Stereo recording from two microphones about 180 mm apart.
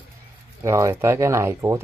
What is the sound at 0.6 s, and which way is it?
Speech, 15° right (ahead or behind).